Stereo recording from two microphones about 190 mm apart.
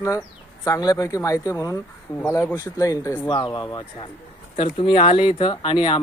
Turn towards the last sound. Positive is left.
turn(degrees=25)  # may be behind; listen again after turning